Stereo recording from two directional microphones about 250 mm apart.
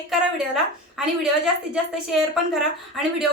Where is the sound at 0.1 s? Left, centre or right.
Centre.